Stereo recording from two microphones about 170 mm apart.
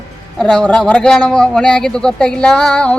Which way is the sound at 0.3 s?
5° left (ahead or behind).